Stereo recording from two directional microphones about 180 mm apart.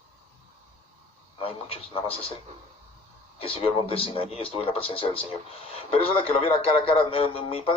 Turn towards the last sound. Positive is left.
turn(degrees=30)  # may be behind; listen again after turning